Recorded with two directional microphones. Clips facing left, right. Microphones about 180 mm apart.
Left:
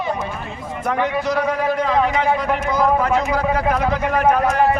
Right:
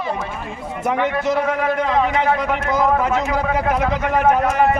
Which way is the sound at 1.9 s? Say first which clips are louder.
Left 1 dB; centre (ahead or behind).